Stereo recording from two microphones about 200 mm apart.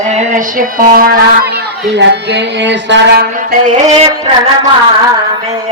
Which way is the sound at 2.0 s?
60° right (ahead or behind).